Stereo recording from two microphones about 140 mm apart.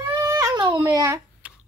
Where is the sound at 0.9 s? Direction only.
20° right (ahead or behind).